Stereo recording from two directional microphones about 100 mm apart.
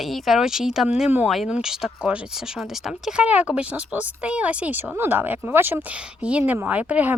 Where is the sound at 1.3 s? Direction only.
5° right (ahead or behind).